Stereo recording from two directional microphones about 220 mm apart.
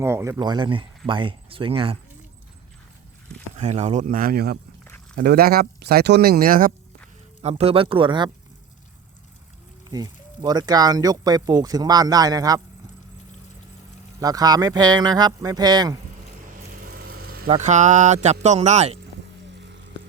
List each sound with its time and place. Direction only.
0.0 s speech: 10° right (ahead or behind)
3.6 s speech: 30° right (ahead or behind)
7.4 s speech: 25° right (ahead or behind)
9.9 s speech: 20° right (ahead or behind)
14.2 s speech: 15° right (ahead or behind)
16.8 s vehicle: 40° right (ahead or behind)
17.4 s speech: 30° right (ahead or behind)
19.5 s music: 55° right (ahead or behind)